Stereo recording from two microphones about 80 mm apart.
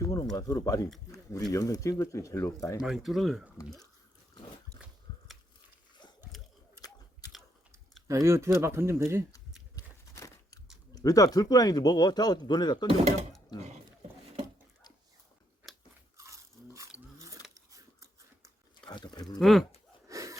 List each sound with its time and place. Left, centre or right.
0.0 s a sound: left
0.5 s speech: left
2.8 s speech: centre
8.0 s speech: right
9.7 s a sound: left
10.9 s speech: left
16.1 s crunch: right
17.5 s scissors: right
18.9 s livestock: left
19.4 s speech: centre
20.1 s gasp: right